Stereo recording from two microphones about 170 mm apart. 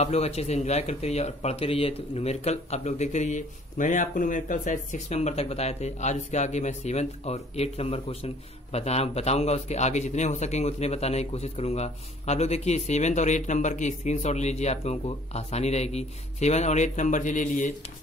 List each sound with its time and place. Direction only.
0.0 s speech: 40° left (ahead or behind)